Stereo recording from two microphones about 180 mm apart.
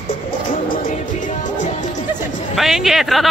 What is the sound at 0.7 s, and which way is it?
Music, 45° left (ahead or behind).